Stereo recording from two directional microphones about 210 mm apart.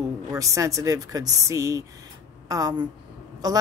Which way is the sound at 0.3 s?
15° right (ahead or behind).